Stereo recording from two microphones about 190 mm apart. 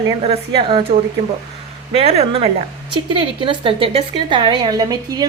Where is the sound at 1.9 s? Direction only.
35° right (ahead or behind).